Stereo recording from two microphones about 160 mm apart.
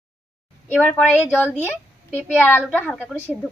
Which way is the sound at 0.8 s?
10° left (ahead or behind).